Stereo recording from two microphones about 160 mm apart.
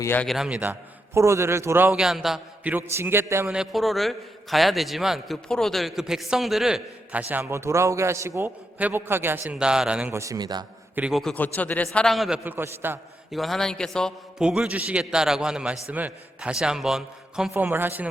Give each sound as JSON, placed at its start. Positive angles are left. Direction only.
{"t": 0.0, "sound": "a man's voice", "side_deg": 15}
{"t": 0.3, "sound": "a man's voice", "side_deg": -5}
{"t": 1.9, "sound": "a man's voice", "side_deg": 0}
{"t": 3.5, "sound": "a man's voice", "side_deg": 0}
{"t": 10.2, "sound": "a man's voice", "side_deg": -20}
{"t": 10.9, "sound": "a man's voice", "side_deg": -5}
{"t": 12.5, "sound": "a man's voice", "side_deg": -15}
{"t": 13.3, "sound": "a man's voice", "side_deg": 0}